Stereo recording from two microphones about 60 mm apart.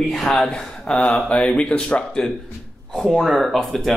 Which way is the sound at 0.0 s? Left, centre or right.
Centre.